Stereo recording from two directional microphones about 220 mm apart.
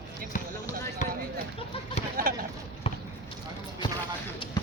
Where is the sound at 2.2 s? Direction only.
40° right (ahead or behind).